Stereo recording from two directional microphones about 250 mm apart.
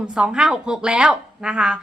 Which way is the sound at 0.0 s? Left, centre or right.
Centre.